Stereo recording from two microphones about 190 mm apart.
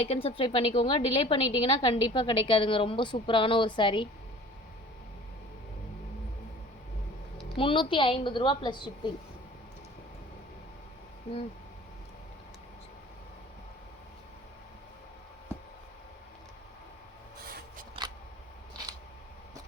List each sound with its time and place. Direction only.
0.0 s a woman's voice: 30° left (ahead or behind)
7.5 s a woman's voice: 30° left (ahead or behind)